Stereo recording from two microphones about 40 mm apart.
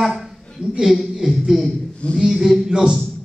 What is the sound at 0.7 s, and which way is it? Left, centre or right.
A man's voice, centre.